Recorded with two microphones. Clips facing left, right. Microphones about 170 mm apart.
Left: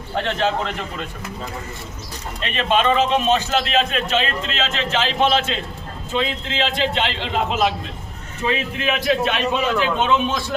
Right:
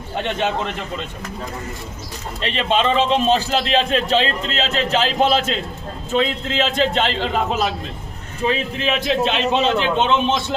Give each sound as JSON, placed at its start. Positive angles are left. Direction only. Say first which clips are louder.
{"t": 0.2, "sound": "a man's voice", "louder": "left 1 dB", "side_deg": -20}
{"t": 2.4, "sound": "a man's voice", "louder": "even", "side_deg": -30}
{"t": 8.4, "sound": "a man's voice", "louder": "right 2 dB", "side_deg": -25}